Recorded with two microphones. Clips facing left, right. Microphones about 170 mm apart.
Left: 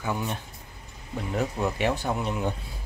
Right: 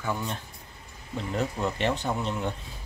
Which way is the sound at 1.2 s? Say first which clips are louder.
Left 1 dB; 5° left (ahead or behind).